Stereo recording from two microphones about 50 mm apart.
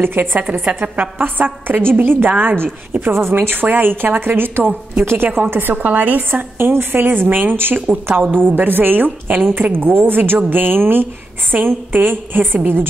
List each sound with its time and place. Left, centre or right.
0.0 s a woman's voice: right
0.4 s a woman's voice: right
6.6 s a woman's voice: right